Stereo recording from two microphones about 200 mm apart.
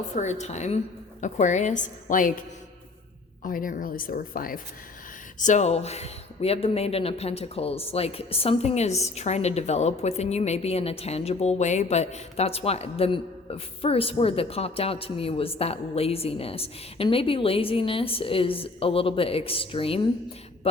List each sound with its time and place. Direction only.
0.2 s a woman's voice: 35° left (ahead or behind)
3.4 s a woman's voice: 40° left (ahead or behind); by 20.1 s 25° left (ahead or behind)